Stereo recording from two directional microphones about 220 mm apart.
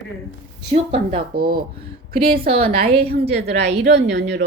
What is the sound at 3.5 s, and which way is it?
Speech, 50° right (ahead or behind).